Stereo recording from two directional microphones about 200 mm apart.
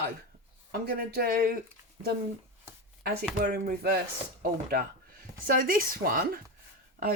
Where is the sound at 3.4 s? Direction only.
50° right (ahead or behind).